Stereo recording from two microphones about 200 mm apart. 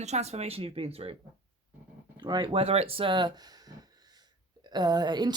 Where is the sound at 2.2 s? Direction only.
25° right (ahead or behind).